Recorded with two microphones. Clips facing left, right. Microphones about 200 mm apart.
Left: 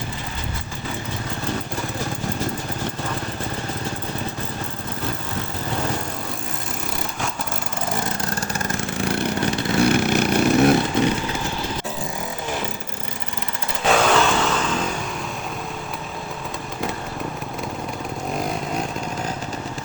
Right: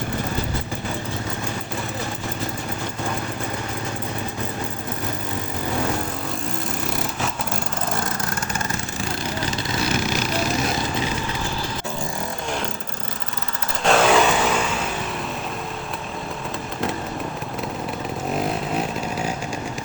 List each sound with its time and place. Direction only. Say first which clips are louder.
9.0 s vehicle: left 6 dB; 60° left (ahead or behind)
13.8 s vehicle: right 1 dB; centre (ahead or behind)
18.3 s vehicle: right 2 dB; 5° right (ahead or behind)